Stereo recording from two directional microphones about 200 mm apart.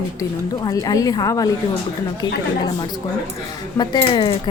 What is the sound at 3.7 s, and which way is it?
Speech, 20° left (ahead or behind).